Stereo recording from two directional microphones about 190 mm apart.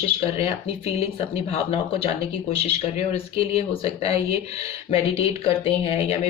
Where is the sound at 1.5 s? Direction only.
30° left (ahead or behind).